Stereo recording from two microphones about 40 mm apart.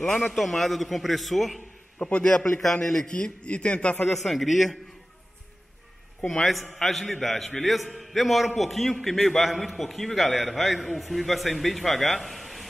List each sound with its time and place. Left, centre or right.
0.0 s a man's voice: centre
2.0 s a man's voice: left
2.2 s a man's voice: centre
3.1 s a man's voice: left
4.1 s a man's voice: centre
6.4 s a man's voice: centre